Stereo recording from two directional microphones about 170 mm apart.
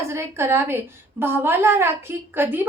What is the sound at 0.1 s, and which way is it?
A woman's voice, 15° right (ahead or behind).